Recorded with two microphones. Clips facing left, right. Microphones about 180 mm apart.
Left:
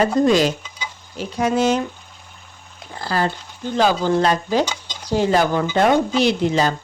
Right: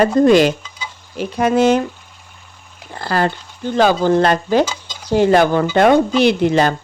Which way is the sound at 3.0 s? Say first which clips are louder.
Right 3 dB; 65° right (ahead or behind).